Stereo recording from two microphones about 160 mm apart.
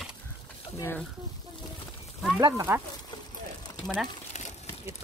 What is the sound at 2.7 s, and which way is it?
Speech, 15° right (ahead or behind).